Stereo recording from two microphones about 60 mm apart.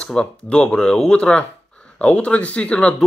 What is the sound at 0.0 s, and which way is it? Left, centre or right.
Speech, centre.